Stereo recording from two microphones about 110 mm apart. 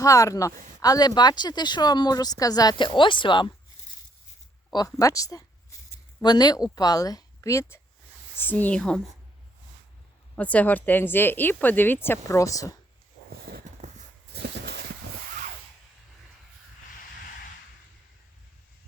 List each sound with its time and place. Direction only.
0.0 s speech: 30° left (ahead or behind); by 3.5 s 45° left (ahead or behind)
4.9 s speech: 30° left (ahead or behind)
8.4 s speech: 15° left (ahead or behind)
10.3 s speech: 15° left (ahead or behind); by 12.7 s 30° left (ahead or behind)
13.8 s horse: 90° right